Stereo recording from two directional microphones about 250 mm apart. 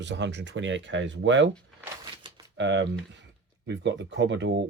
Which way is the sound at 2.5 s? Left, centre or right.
Right.